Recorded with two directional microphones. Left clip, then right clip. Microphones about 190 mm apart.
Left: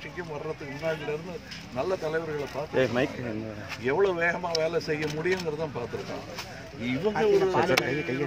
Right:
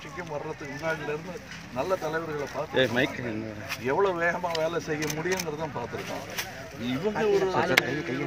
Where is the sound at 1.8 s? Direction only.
15° left (ahead or behind).